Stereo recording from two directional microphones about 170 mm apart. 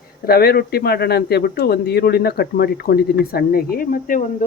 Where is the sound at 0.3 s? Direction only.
65° left (ahead or behind).